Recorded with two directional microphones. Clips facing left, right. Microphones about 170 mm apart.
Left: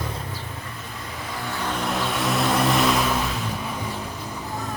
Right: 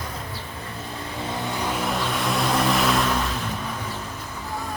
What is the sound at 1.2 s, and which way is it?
Vehicle, 20° right (ahead or behind).